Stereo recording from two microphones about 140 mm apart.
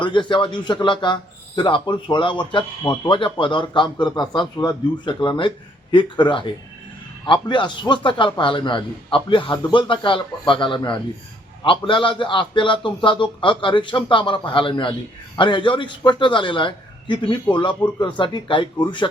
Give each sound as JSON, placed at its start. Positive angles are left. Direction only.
{"t": 0.0, "sound": "a man's voice", "side_deg": 35}